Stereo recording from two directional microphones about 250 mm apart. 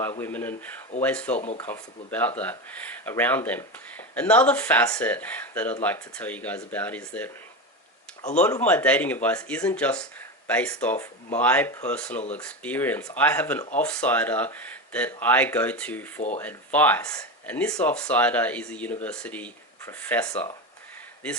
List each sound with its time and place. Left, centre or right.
0.0 s speech: centre
1.4 s speech: left
1.6 s speech: centre
8.4 s speech: centre